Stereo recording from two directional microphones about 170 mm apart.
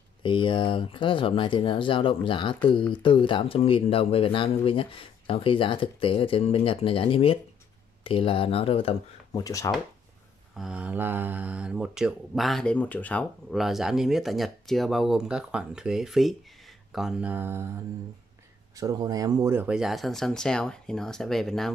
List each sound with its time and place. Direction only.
0.2 s speech: 30° left (ahead or behind)
9.4 s speech: 20° left (ahead or behind)
10.6 s speech: 5° right (ahead or behind)
18.8 s speech: 20° right (ahead or behind); by 21.7 s centre (ahead or behind)